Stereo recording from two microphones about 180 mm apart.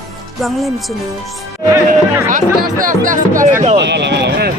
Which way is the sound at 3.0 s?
45° right (ahead or behind).